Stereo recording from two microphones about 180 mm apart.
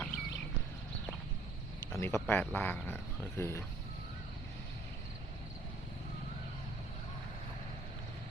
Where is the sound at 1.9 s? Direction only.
15° left (ahead or behind).